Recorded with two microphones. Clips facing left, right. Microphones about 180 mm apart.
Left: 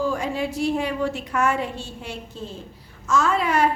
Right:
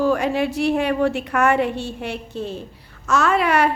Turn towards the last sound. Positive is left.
turn(degrees=-70)  # may be behind; listen again after turning